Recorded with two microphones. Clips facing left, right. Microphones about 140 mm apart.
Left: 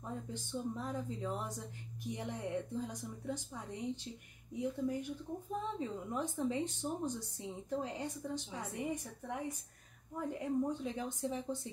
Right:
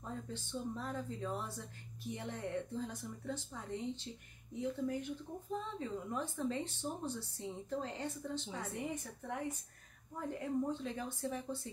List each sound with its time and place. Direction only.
0.0 s speech: 15° left (ahead or behind)
10.7 s speech: 15° left (ahead or behind)